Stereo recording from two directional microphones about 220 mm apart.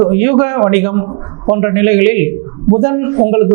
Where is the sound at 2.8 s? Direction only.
20° right (ahead or behind).